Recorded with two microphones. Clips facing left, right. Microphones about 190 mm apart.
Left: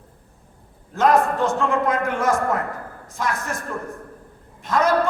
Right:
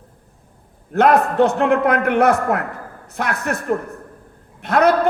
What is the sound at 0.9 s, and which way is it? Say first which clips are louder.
A man's voice: right 4 dB; 65° right (ahead or behind).